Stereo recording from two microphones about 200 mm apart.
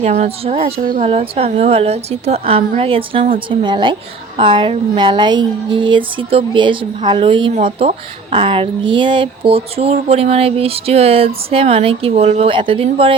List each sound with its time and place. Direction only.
0.0 s a woman's voice: 35° right (ahead or behind)